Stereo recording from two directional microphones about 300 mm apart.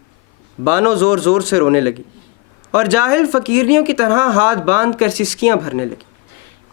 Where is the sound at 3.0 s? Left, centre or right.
Left.